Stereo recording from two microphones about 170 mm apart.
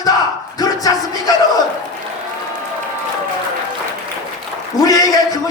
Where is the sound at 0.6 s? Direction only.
20° left (ahead or behind).